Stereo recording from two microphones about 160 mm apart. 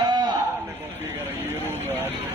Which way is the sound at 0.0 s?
25° right (ahead or behind).